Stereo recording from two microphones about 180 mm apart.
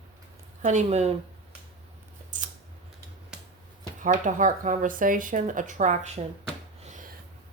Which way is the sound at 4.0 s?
45° right (ahead or behind).